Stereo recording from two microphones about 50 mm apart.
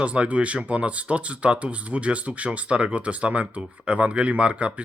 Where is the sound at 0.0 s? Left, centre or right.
Right.